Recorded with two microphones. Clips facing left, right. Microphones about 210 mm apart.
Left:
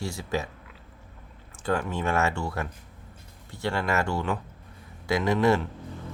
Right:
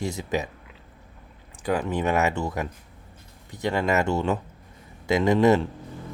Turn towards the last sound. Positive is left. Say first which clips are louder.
# right 4 dB
turn(degrees=-25)  # may be behind; listen again after turning